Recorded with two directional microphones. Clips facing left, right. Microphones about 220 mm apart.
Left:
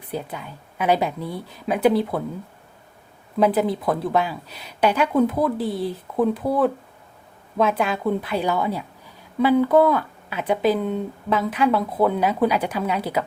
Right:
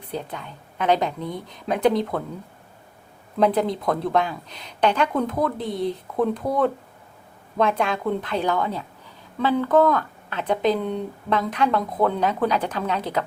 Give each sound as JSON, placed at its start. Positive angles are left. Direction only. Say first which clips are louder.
{"t": 0.1, "sound": "speech", "louder": "left 1 dB", "side_deg": 5}
{"t": 3.3, "sound": "speech", "louder": "left 1 dB", "side_deg": 5}